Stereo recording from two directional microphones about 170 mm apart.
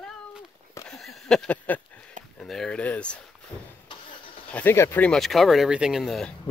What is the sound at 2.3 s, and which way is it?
Speech, centre (ahead or behind).